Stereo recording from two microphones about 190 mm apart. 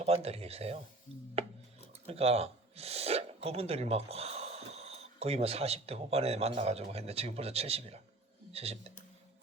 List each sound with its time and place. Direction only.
0.0 s speech: 35° right (ahead or behind)